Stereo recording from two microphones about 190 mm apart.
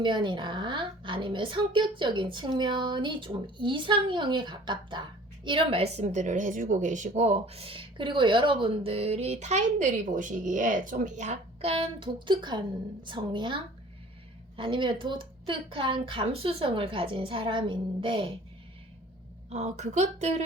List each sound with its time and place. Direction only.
0.0 s a woman's voice: 25° right (ahead or behind)
19.5 s a woman's voice: 35° right (ahead or behind)